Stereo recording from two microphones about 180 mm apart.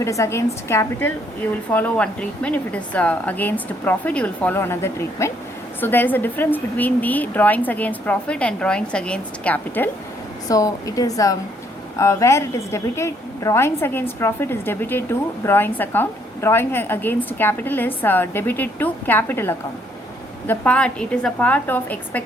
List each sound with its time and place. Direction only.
0.0 s a woman's voice: 15° left (ahead or behind)